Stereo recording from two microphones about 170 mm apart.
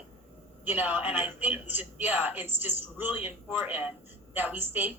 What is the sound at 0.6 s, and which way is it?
Speech, 10° right (ahead or behind).